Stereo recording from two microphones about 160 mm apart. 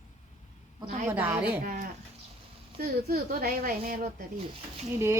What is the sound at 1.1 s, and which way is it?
Speech, 10° right (ahead or behind).